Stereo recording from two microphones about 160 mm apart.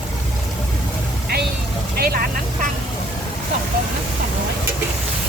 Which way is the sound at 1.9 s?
70° right (ahead or behind).